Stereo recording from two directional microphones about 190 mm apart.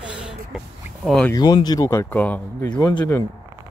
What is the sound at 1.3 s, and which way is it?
Speech, 20° left (ahead or behind).